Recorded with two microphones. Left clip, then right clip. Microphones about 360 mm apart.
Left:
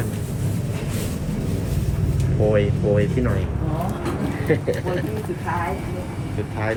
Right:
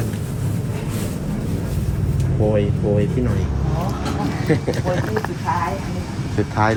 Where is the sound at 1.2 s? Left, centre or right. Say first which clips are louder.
Right 1 dB; centre.